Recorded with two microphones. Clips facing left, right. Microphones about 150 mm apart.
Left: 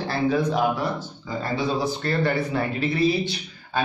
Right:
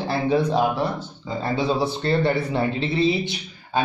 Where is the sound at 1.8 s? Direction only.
25° right (ahead or behind).